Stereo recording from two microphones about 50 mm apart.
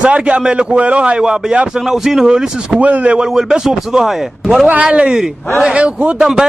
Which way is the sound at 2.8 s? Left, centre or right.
Right.